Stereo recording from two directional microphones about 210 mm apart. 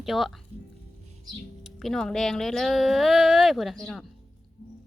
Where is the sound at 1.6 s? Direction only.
Centre (ahead or behind).